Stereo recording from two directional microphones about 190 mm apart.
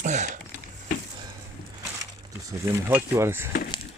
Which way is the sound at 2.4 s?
10° right (ahead or behind).